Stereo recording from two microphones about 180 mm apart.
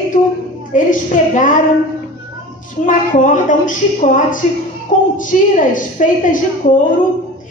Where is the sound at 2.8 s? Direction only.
45° left (ahead or behind).